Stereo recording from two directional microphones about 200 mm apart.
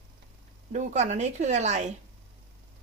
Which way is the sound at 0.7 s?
35° right (ahead or behind).